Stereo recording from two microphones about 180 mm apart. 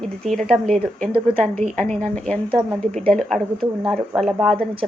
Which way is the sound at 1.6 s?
35° right (ahead or behind).